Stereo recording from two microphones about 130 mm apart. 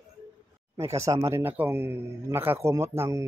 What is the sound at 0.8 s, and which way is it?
A man's voice, 20° right (ahead or behind).